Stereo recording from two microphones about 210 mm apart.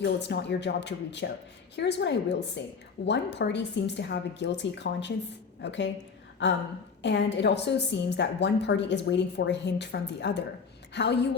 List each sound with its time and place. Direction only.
0.0 s a woman's voice: 55° left (ahead or behind)
7.0 s a woman's voice: 55° left (ahead or behind)